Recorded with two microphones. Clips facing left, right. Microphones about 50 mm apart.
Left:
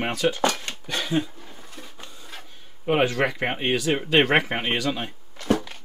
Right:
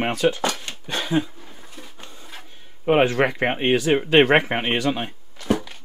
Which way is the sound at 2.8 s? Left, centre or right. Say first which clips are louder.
Right 4 dB; right.